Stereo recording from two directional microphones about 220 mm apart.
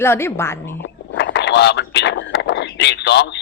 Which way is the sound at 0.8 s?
50° left (ahead or behind).